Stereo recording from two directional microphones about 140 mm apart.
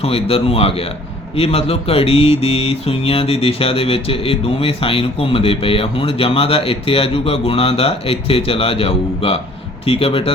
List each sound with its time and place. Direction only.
0.0 s mantra: 45° left (ahead or behind)